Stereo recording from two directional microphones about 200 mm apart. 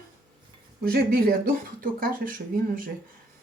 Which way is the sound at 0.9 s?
50° right (ahead or behind).